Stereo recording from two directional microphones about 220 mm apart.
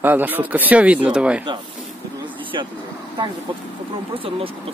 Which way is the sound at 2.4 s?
25° right (ahead or behind).